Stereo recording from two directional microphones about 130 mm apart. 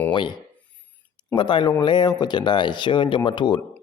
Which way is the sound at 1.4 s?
35° left (ahead or behind).